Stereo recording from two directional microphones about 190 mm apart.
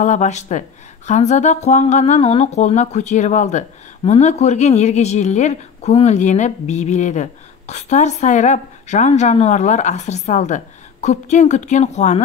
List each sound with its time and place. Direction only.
0.0 s speech: 40° left (ahead or behind)